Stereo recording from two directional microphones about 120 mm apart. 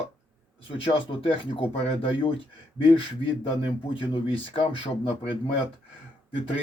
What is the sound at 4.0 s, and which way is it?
Speech, 45° left (ahead or behind).